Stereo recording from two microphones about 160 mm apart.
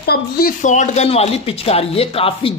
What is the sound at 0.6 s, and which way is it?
Speech, 50° left (ahead or behind).